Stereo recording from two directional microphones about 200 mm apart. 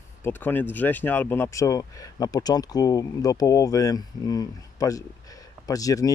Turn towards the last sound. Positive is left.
turn(degrees=15)  # may be behind; listen again after turning